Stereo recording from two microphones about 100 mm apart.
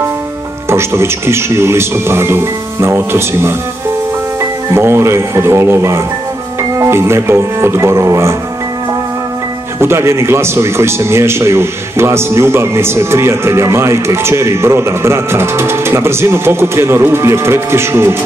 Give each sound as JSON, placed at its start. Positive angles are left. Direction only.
{"t": 0.7, "sound": "speech", "side_deg": -25}
{"t": 4.6, "sound": "speech", "side_deg": -25}
{"t": 9.8, "sound": "speech", "side_deg": -25}